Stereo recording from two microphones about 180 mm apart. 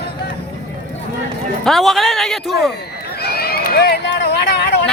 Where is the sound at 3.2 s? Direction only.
60° left (ahead or behind).